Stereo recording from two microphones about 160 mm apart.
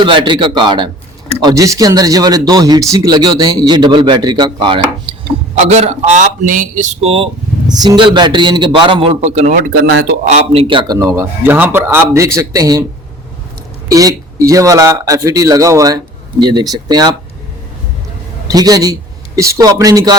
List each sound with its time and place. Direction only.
0.0 s speech: 30° right (ahead or behind)
5.6 s speech: 40° right (ahead or behind)
7.7 s speech: 25° right (ahead or behind); by 9.7 s 50° right (ahead or behind)
10.2 s a man's voice: 40° right (ahead or behind)
10.9 s speech: 20° right (ahead or behind)
13.9 s speech: 20° right (ahead or behind)
18.4 s speech: 25° right (ahead or behind)